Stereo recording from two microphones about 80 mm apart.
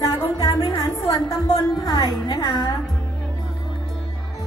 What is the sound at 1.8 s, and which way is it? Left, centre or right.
Speech, left.